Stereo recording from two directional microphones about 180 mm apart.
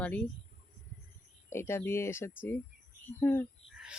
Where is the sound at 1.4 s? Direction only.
15° left (ahead or behind).